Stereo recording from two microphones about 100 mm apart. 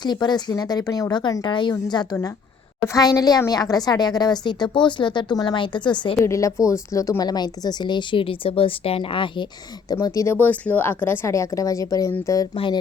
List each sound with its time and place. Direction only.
0.0 s a woman's voice: 45° left (ahead or behind)
2.8 s a woman's voice: 35° left (ahead or behind); by 6.1 s 50° left (ahead or behind)
6.2 s a woman's voice: 30° left (ahead or behind); by 9.5 s 55° left (ahead or behind)
9.9 s a woman's voice: 35° left (ahead or behind)
10.3 s a woman's voice: 15° left (ahead or behind); by 12.5 s 35° left (ahead or behind)